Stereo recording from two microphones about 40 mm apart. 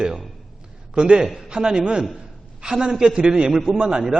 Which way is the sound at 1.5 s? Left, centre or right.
Right.